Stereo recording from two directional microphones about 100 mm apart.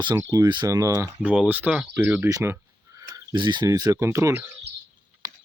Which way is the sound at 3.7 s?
35° right (ahead or behind).